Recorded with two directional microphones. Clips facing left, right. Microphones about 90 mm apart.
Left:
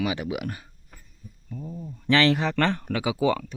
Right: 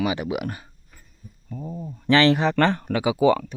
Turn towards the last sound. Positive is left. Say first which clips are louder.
# right 5 dB
turn(degrees=-20)  # may be behind; listen again after turning